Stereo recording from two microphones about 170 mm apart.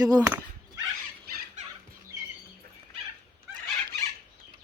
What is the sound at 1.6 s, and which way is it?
Fowl, 45° right (ahead or behind).